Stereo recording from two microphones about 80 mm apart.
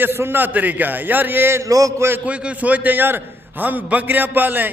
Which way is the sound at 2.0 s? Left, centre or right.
Right.